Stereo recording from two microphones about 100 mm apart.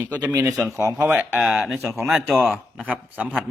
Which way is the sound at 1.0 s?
20° right (ahead or behind).